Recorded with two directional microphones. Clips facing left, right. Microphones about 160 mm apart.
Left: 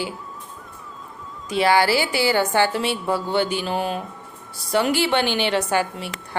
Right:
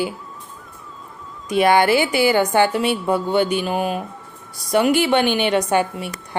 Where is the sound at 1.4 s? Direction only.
15° right (ahead or behind).